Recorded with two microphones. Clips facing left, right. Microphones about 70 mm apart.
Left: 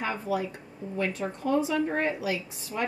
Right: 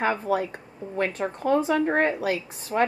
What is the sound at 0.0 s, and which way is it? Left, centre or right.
Speech, right.